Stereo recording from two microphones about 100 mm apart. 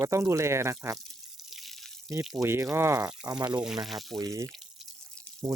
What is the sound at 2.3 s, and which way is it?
Speech, 30° right (ahead or behind).